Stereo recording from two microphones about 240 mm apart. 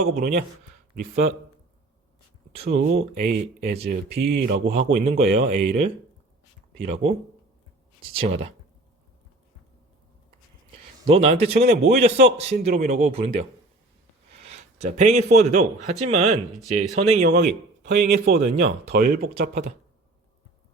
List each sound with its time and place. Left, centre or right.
0.0 s speech: right
2.7 s speech: right
4.6 s a man's voice: right
8.2 s a man's voice: right
11.0 s a man's voice: right
11.9 s speech: right
12.6 s a man's voice: right
14.3 s a man's voice: right
17.2 s speech: right